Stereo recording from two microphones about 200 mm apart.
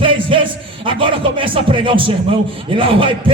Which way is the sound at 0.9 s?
25° right (ahead or behind).